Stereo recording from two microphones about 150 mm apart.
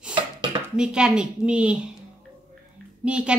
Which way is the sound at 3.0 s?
5° right (ahead or behind).